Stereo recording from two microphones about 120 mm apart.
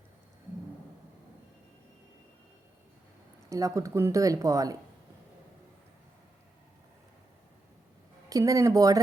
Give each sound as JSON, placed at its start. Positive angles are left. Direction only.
{"t": 3.5, "sound": "speech", "side_deg": -25}
{"t": 8.3, "sound": "speech", "side_deg": -30}